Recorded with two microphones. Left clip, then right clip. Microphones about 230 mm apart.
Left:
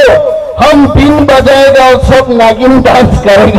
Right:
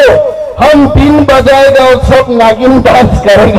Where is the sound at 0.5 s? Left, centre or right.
Left.